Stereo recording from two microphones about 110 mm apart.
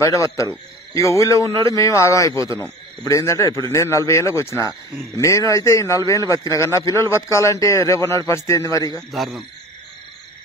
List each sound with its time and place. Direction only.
0.0 s speech: 30° left (ahead or behind)
9.1 s speech: centre (ahead or behind)